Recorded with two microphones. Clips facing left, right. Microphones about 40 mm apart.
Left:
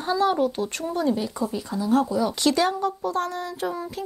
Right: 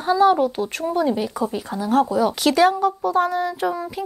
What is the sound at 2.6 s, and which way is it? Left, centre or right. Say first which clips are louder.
Speech: right 6 dB; centre.